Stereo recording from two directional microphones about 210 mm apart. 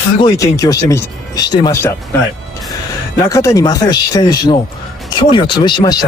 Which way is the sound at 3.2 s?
15° left (ahead or behind).